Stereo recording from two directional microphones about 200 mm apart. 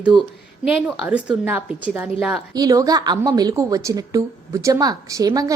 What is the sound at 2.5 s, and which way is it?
A woman's voice, 15° right (ahead or behind).